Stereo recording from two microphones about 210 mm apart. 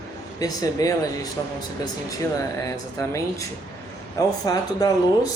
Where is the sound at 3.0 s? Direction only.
15° left (ahead or behind).